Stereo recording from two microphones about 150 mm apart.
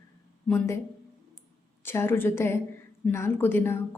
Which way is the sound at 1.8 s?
15° left (ahead or behind).